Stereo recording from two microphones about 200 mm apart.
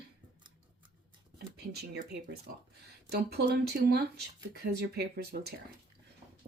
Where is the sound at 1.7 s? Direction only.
55° right (ahead or behind).